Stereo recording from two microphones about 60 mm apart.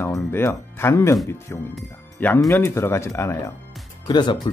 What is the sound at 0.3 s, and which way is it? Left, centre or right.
Speech, left.